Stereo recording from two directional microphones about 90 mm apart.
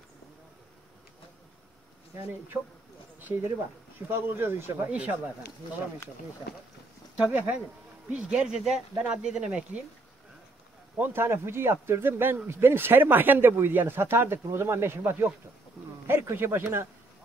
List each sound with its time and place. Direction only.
4.1 s speech: 25° right (ahead or behind)
7.2 s speech: 15° right (ahead or behind)
11.0 s speech: 25° right (ahead or behind)